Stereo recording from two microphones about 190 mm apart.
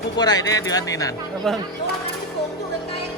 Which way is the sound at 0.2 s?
20° left (ahead or behind).